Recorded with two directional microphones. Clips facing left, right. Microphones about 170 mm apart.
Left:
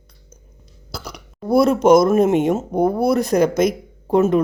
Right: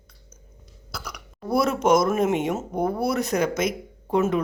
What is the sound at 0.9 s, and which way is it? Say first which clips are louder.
Speech: left 4 dB; 30° left (ahead or behind).